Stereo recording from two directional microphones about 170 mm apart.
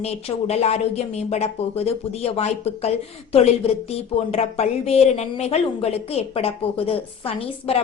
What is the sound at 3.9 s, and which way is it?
A woman's voice, 35° left (ahead or behind).